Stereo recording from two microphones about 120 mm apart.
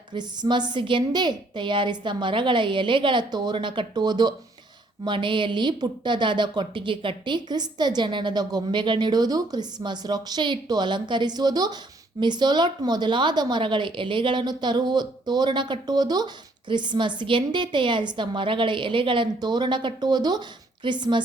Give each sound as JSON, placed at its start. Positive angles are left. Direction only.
{"t": 0.1, "sound": "a woman's voice", "side_deg": -40}